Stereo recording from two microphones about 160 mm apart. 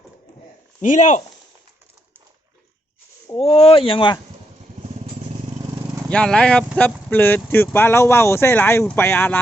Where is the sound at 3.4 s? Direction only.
40° left (ahead or behind).